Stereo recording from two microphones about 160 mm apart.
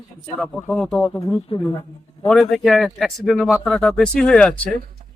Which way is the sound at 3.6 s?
5° left (ahead or behind).